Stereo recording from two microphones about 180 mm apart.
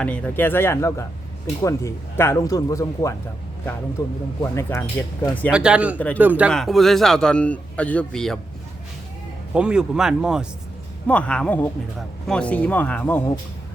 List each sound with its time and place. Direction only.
0.0 s speech: 5° left (ahead or behind)
5.5 s a man's voice: 5° right (ahead or behind)
6.5 s a man's voice: centre (ahead or behind)
9.6 s a man's voice: 5° right (ahead or behind); by 13.4 s 15° left (ahead or behind)